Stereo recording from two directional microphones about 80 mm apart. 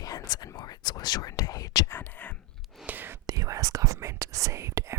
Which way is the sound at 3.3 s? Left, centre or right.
Right.